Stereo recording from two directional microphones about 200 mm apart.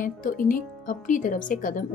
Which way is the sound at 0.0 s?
45° left (ahead or behind).